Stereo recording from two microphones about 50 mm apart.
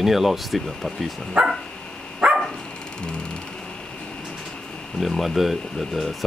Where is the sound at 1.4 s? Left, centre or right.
Centre.